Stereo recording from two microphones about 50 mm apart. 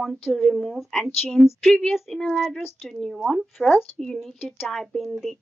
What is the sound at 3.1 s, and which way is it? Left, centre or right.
A woman's voice, centre.